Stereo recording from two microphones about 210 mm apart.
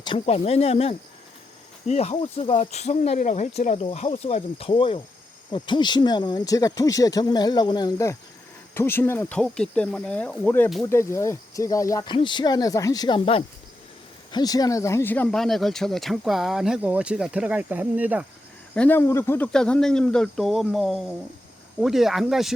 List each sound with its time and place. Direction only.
0.0 s speech: 25° left (ahead or behind); by 18.3 s 5° right (ahead or behind)
18.7 s speech: 10° left (ahead or behind)